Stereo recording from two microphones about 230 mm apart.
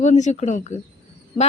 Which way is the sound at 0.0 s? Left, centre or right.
Left.